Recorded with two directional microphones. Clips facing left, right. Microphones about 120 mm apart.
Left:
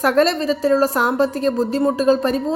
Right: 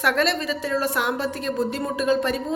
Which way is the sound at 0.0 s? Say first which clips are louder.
Left 6 dB; 40° left (ahead or behind).